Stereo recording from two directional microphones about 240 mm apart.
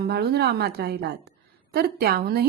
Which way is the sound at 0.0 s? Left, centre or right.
Right.